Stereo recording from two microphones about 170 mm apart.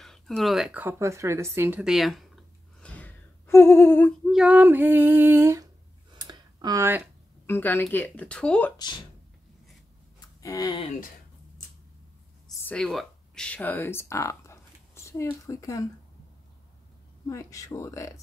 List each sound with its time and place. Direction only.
0.0 s speech: centre (ahead or behind)
4.3 s female singing: 5° right (ahead or behind)
6.1 s a sound: 25° right (ahead or behind)
7.4 s speech: 10° left (ahead or behind)
10.4 s speech: 20° left (ahead or behind)
12.6 s speech: 5° left (ahead or behind); by 15.9 s 20° left (ahead or behind)
17.3 s speech: 20° left (ahead or behind)